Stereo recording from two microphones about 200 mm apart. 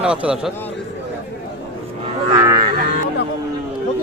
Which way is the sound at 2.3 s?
20° right (ahead or behind).